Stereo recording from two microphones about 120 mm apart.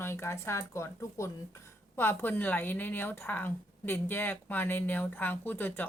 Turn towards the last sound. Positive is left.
turn(degrees=15)  # may be behind; listen again after turning